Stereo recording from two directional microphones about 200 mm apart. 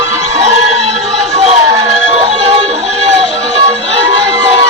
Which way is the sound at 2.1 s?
30° right (ahead or behind).